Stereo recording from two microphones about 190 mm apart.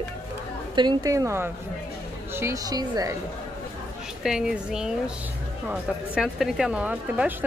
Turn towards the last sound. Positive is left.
turn(degrees=-5)  # may be behind; listen again after turning